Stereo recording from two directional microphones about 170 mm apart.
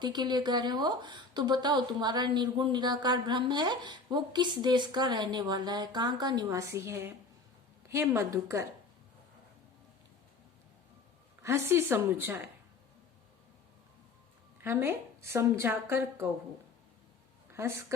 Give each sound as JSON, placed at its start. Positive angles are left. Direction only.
{"t": 0.0, "sound": "a woman's voice", "side_deg": -25}
{"t": 11.4, "sound": "a woman's voice", "side_deg": -15}
{"t": 14.6, "sound": "a woman's voice", "side_deg": -15}
{"t": 17.5, "sound": "speech", "side_deg": -15}